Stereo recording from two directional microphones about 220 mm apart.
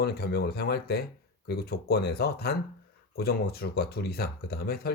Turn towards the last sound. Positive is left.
turn(degrees=45)  # may be behind; listen again after turning